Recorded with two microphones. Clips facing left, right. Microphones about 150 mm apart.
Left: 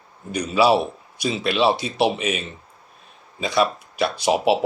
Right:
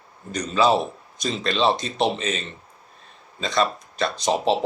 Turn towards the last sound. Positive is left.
turn(degrees=10)  # may be behind; listen again after turning